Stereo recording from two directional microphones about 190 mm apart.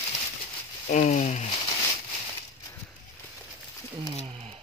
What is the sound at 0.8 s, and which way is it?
Speech, 40° left (ahead or behind).